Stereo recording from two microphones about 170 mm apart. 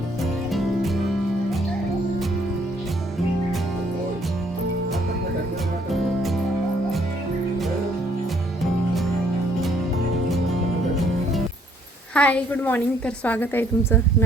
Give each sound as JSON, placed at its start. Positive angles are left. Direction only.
{"t": 12.1, "sound": "a woman's voice", "side_deg": 10}